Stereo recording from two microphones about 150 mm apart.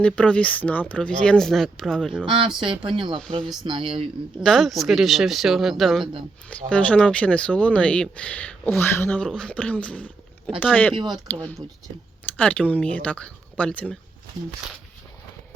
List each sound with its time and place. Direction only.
0.0 s speech: 5° left (ahead or behind)
2.2 s speech: 35° right (ahead or behind)
4.4 s speech: centre (ahead or behind)